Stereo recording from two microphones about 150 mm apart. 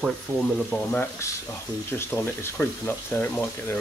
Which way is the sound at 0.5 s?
5° left (ahead or behind).